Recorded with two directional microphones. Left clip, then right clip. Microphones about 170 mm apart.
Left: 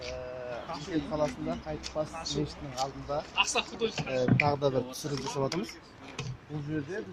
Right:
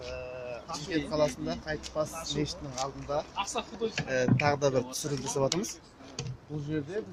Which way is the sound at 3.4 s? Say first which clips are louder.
Left 3 dB; 65° right (ahead or behind).